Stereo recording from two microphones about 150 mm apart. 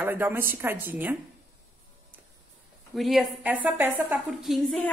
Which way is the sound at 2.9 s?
Centre (ahead or behind).